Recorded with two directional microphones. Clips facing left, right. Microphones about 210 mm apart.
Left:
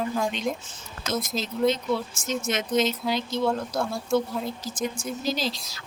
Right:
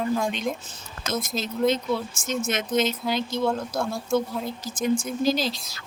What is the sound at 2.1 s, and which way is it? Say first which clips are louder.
Speech: right 1 dB; 50° right (ahead or behind).